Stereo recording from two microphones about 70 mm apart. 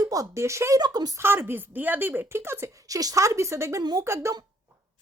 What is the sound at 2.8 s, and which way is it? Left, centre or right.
Speech, right.